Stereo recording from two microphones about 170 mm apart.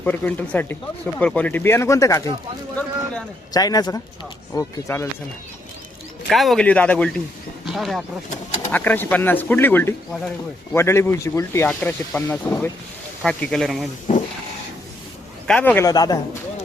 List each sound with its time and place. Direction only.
0.0 s speech: 10° left (ahead or behind)
3.5 s speech: 20° left (ahead or behind)
6.2 s a man's voice: centre (ahead or behind)
8.7 s a man's voice: 10° left (ahead or behind)
10.8 s a man's voice: 15° left (ahead or behind)
14.1 s printer: 45° left (ahead or behind)
15.4 s speech: 10° left (ahead or behind)